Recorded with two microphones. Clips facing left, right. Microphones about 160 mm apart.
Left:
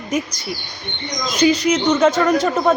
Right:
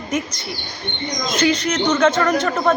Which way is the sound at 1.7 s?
Centre (ahead or behind).